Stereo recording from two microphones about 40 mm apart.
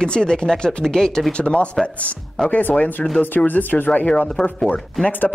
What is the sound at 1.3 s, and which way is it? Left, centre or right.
Speech, left.